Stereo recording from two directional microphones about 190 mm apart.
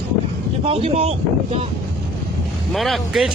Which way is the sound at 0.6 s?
30° right (ahead or behind).